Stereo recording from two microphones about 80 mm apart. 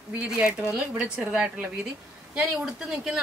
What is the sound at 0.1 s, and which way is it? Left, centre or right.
A woman's voice, centre.